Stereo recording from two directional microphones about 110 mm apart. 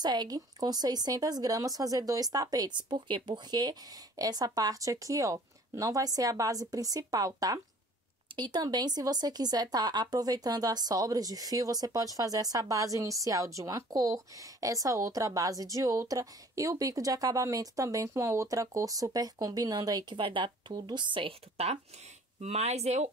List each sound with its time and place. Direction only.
0.0 s speech: 40° right (ahead or behind); by 21.7 s 65° right (ahead or behind)
22.4 s speech: 75° right (ahead or behind)